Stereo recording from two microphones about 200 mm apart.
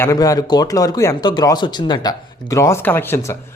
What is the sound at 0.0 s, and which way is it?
Speech, 15° left (ahead or behind).